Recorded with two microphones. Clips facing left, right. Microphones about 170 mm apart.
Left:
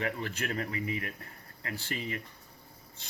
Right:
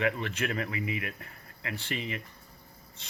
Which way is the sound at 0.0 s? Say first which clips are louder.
Right 4 dB; 40° left (ahead or behind).